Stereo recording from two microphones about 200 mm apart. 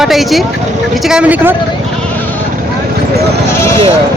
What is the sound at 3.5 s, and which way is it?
Speech, 15° left (ahead or behind).